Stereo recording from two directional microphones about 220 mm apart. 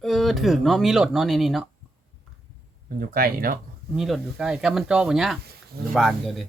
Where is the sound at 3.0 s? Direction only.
40° right (ahead or behind).